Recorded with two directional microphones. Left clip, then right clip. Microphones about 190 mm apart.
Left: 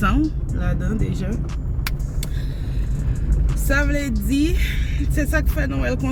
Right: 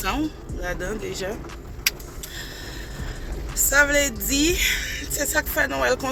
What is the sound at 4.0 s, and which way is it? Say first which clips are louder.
Speech: right 1 dB; centre (ahead or behind).